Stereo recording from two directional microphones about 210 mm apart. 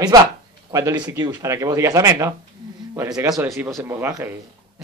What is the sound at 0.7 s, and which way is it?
A man's voice, 20° right (ahead or behind).